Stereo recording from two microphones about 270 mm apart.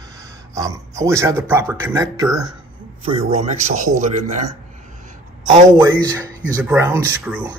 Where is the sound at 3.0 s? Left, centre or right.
Right.